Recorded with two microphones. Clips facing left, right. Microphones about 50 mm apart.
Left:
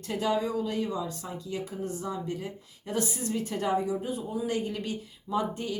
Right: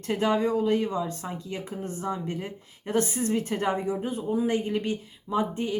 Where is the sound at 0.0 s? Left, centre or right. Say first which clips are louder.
Right 4 dB; right.